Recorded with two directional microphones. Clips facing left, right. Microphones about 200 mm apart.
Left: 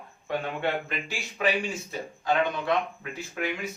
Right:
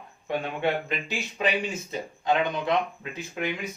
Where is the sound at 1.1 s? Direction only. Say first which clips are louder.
Left 1 dB; 20° right (ahead or behind).